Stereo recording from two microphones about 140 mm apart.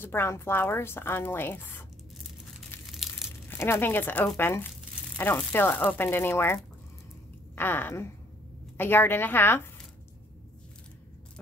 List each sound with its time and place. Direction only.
0.0 s a woman's voice: 15° left (ahead or behind)
2.9 s crumpling: centre (ahead or behind)
3.4 s a woman's voice: 20° left (ahead or behind)